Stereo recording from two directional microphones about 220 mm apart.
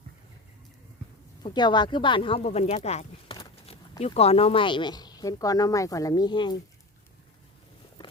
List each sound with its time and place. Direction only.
1.4 s speech: 20° left (ahead or behind)